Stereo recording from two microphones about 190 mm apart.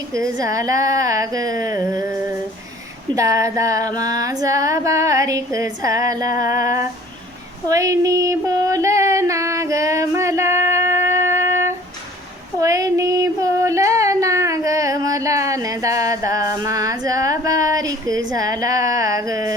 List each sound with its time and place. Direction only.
0.1 s female singing: 15° right (ahead or behind)
7.7 s a sound: 15° right (ahead or behind)
12.5 s child singing: 15° right (ahead or behind)
18.3 s a woman's voice: 20° right (ahead or behind)